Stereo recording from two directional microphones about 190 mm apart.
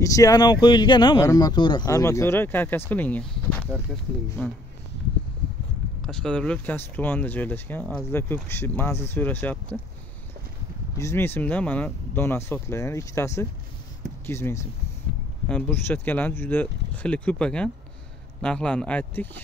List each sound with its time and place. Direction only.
0.0 s speech: 15° left (ahead or behind)
6.0 s speech: 5° left (ahead or behind)
11.0 s speech: 15° left (ahead or behind)